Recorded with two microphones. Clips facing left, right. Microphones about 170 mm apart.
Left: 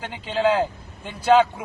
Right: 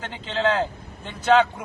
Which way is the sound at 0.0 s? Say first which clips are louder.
Left 2 dB; 10° left (ahead or behind).